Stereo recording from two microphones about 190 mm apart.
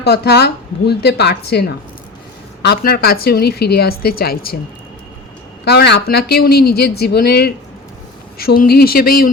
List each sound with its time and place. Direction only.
0.0 s a woman's voice: 60° left (ahead or behind)
5.6 s a woman's voice: 60° left (ahead or behind)